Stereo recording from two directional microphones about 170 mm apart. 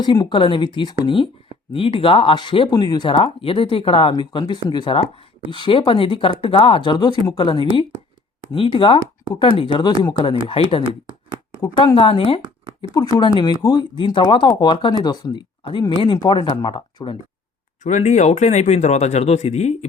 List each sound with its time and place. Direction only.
0.0 s speech: 25° left (ahead or behind)
17.8 s speech: 45° left (ahead or behind)